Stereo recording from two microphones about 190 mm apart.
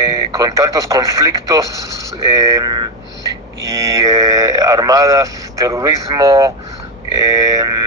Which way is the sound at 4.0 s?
20° right (ahead or behind).